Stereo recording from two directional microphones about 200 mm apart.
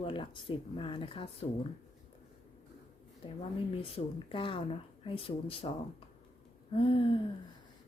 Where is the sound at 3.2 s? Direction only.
30° left (ahead or behind).